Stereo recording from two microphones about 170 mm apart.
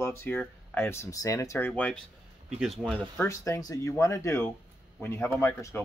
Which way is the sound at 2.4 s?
5° right (ahead or behind).